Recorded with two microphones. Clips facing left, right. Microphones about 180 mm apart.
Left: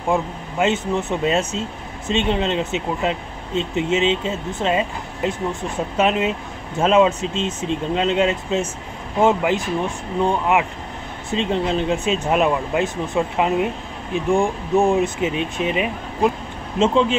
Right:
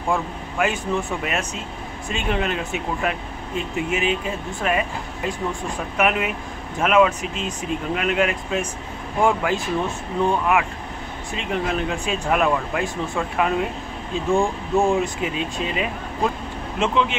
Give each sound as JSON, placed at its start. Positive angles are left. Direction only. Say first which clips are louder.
{"t": 0.1, "sound": "speech", "louder": "left 3 dB", "side_deg": 20}